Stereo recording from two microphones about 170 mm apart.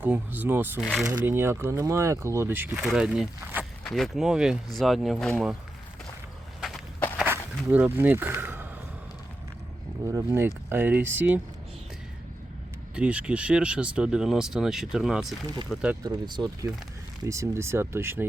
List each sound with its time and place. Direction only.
0.0 s speech: 10° right (ahead or behind)
0.8 s speech: centre (ahead or behind)
1.0 s speech: 15° right (ahead or behind); by 5.5 s centre (ahead or behind)
7.2 s a sound: 10° right (ahead or behind)
10.1 s speech: 15° right (ahead or behind)
13.0 s speech: 5° right (ahead or behind)
16.0 s speech: 25° right (ahead or behind)